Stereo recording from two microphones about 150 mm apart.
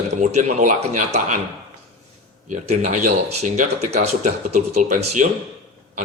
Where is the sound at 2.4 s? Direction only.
50° right (ahead or behind).